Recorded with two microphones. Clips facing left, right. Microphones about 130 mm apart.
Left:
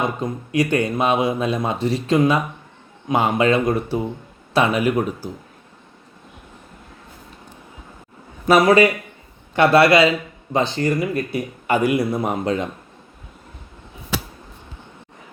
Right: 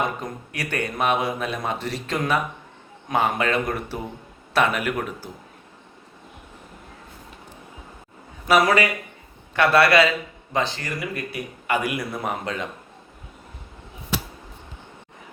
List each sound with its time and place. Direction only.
0.5 s speech: 20° left (ahead or behind)
8.4 s speech: 25° left (ahead or behind)